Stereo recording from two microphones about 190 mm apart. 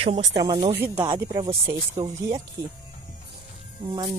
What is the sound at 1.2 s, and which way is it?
Speech, 30° right (ahead or behind).